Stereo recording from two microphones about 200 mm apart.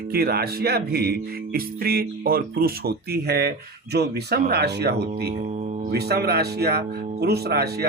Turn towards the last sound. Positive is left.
turn(degrees=-55)  # may be behind; listen again after turning